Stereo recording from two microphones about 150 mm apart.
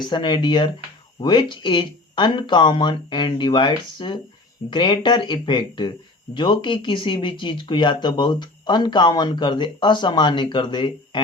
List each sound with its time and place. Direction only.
0.0 s speech: 30° left (ahead or behind)